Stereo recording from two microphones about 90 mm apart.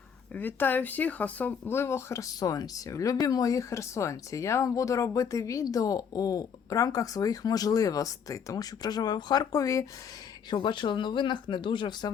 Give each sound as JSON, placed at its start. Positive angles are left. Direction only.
{"t": 0.3, "sound": "speech", "side_deg": 20}
{"t": 2.4, "sound": "speech", "side_deg": 45}
{"t": 10.5, "sound": "speech", "side_deg": 60}